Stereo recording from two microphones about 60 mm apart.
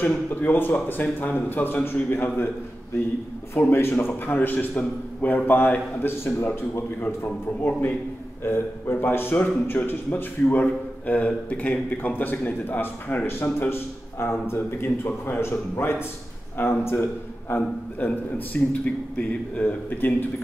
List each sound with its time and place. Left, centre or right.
0.3 s a man's voice: left
3.5 s a man's voice: left
8.5 s a man's voice: left